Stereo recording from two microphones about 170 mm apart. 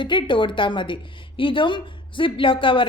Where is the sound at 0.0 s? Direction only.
30° left (ahead or behind).